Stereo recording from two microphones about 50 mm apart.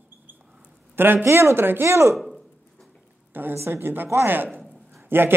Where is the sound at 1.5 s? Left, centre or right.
Right.